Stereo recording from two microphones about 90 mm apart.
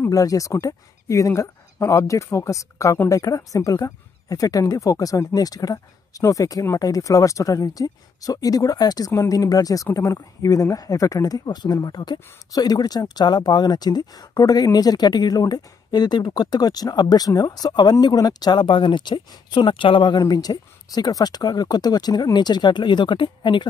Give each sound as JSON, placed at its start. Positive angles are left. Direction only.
{"t": 0.0, "sound": "speech", "side_deg": 40}